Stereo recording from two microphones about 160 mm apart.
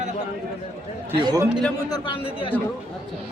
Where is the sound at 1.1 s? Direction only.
30° right (ahead or behind).